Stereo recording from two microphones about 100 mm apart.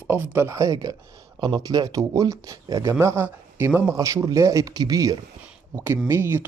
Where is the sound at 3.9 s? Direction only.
30° right (ahead or behind).